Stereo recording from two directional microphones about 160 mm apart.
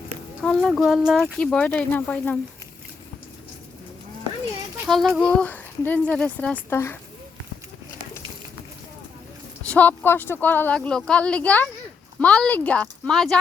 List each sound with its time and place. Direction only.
0.4 s speech: centre (ahead or behind)
4.9 s speech: centre (ahead or behind)
9.6 s speech: 10° left (ahead or behind)